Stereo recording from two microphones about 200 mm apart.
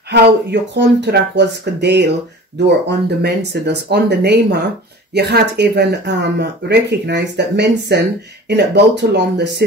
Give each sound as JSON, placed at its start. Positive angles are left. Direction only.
{"t": 0.1, "sound": "speech", "side_deg": -60}